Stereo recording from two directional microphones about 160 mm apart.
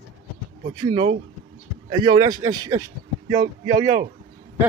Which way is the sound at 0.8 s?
35° right (ahead or behind).